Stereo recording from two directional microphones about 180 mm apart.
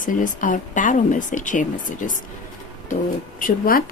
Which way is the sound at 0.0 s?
45° left (ahead or behind).